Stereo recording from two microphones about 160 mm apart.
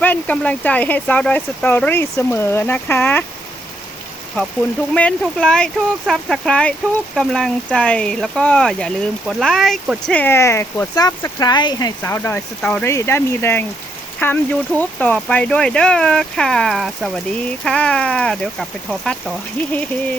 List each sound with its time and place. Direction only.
0.0 s speech: 10° left (ahead or behind)
4.9 s speech: 5° left (ahead or behind)
19.7 s speech: 10° left (ahead or behind)